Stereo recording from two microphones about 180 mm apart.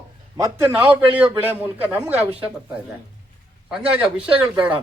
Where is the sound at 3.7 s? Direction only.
5° right (ahead or behind).